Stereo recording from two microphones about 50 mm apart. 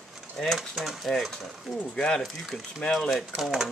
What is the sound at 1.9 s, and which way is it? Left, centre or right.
Speech, centre.